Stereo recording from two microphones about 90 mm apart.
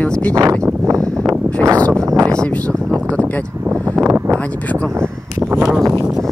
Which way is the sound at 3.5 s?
20° right (ahead or behind).